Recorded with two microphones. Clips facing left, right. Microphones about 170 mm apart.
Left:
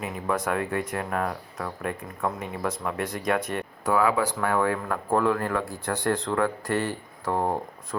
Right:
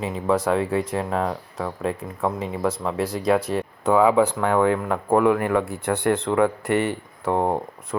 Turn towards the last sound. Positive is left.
turn(degrees=-25)  # may be behind; listen again after turning